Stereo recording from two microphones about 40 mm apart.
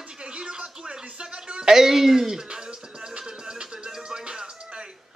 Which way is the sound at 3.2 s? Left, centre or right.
Centre.